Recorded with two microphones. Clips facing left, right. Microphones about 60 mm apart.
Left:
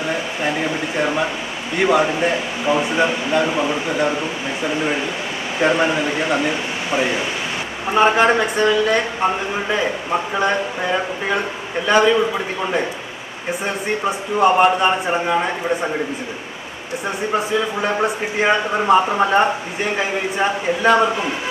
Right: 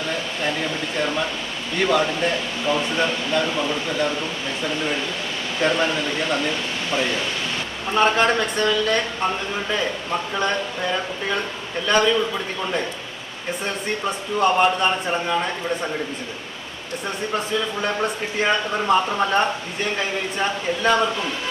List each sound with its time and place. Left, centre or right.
0.1 s speech: centre
17.3 s speech: centre